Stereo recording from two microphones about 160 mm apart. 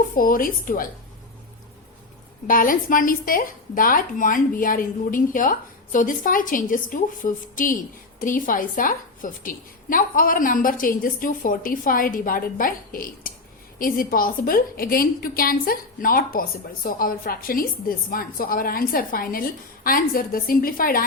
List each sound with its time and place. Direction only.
0.2 s a woman's voice: 60° left (ahead or behind)
2.5 s a woman's voice: 60° left (ahead or behind)